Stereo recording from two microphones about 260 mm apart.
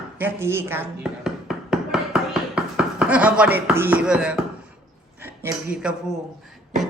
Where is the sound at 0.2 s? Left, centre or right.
Centre.